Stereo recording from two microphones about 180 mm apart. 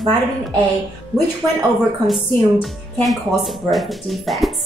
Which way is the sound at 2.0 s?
Centre (ahead or behind).